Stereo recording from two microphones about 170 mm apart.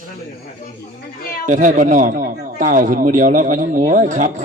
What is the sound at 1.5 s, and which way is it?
A man's voice, 45° right (ahead or behind).